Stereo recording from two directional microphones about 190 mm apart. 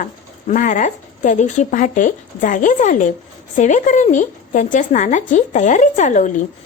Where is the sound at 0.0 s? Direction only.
45° left (ahead or behind).